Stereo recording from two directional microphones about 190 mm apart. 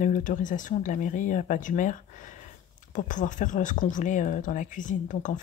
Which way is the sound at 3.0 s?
40° left (ahead or behind).